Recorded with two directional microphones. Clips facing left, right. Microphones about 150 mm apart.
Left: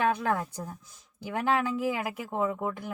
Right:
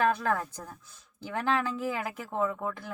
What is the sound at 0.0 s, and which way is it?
A woman's voice, 10° left (ahead or behind).